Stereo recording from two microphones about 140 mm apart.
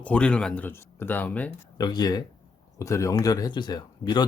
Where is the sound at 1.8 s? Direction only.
30° left (ahead or behind).